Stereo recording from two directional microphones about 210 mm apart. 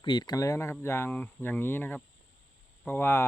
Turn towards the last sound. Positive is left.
turn(degrees=10)  # may be behind; listen again after turning